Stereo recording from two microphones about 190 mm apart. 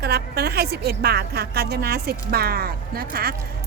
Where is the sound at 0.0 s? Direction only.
60° right (ahead or behind).